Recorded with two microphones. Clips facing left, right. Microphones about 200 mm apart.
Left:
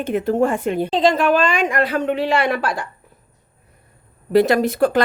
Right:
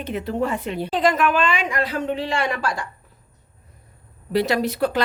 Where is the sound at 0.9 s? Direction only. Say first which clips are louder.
Left 3 dB; 25° left (ahead or behind); by 2.8 s 60° left (ahead or behind).